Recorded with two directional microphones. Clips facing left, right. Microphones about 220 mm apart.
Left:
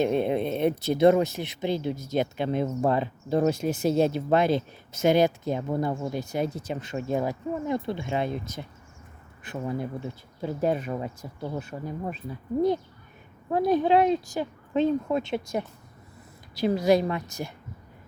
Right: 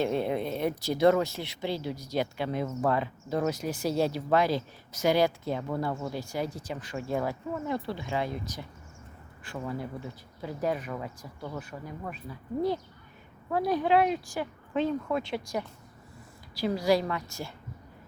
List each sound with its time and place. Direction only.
0.0 s speech: 20° left (ahead or behind)
13.5 s speech: 20° left (ahead or behind)